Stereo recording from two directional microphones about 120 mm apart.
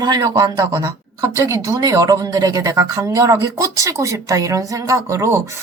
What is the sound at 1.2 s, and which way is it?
Speech, 25° right (ahead or behind).